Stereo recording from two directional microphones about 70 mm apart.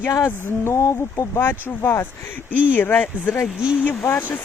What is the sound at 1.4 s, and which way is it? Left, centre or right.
Speech, left.